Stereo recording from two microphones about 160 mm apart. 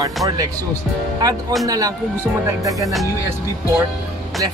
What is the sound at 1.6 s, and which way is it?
Speech, 20° right (ahead or behind).